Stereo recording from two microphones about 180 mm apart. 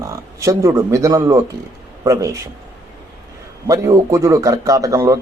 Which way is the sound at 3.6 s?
15° right (ahead or behind).